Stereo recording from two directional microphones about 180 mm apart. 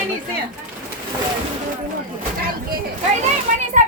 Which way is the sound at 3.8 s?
45° right (ahead or behind).